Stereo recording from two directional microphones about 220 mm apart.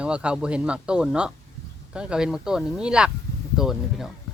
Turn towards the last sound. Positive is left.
turn(degrees=0)  # may be behind; listen again after turning